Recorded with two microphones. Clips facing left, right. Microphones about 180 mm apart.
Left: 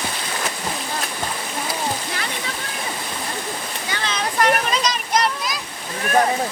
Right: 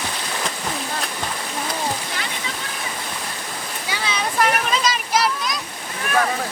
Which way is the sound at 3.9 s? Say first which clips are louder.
Even; 5° right (ahead or behind).